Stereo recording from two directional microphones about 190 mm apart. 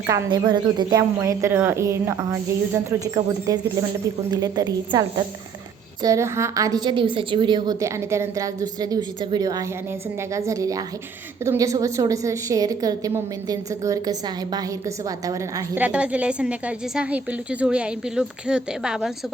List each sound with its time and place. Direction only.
0.1 s a woman's voice: 25° right (ahead or behind); by 19.1 s 5° right (ahead or behind)